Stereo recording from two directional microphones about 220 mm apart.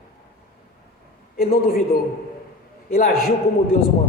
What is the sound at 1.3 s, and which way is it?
A woman's voice, 45° left (ahead or behind).